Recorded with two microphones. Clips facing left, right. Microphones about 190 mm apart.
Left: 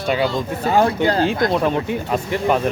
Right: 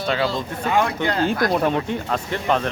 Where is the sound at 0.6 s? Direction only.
35° left (ahead or behind).